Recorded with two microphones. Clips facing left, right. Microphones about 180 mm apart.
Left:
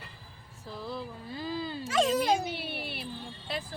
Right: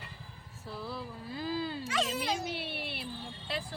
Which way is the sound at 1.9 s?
45° left (ahead or behind).